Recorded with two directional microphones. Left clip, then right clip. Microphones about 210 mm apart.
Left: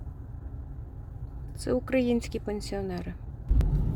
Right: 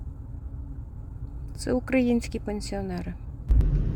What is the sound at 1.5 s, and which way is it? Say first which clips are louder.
Speech: right 2 dB; 5° right (ahead or behind).